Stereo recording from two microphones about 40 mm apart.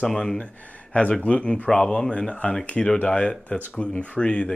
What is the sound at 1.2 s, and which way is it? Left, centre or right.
Speech, left.